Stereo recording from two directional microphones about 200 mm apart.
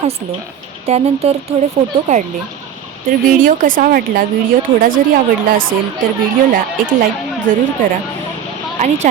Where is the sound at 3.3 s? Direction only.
40° right (ahead or behind).